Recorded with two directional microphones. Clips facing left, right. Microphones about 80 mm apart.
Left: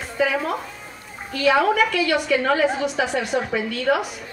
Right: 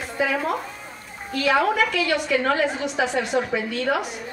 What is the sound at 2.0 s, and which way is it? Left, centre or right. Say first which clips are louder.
Speech: left 2 dB; centre.